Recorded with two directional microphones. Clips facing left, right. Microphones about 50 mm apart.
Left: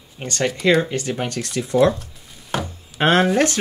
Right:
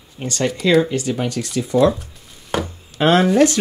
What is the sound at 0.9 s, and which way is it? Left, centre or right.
Speech, left.